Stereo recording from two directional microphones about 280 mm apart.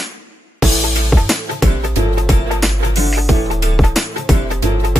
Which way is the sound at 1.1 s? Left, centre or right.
Centre.